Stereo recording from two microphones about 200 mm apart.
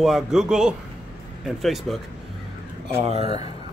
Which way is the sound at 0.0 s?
Centre (ahead or behind).